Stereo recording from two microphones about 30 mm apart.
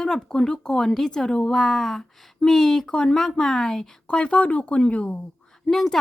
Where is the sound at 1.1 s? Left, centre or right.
Left.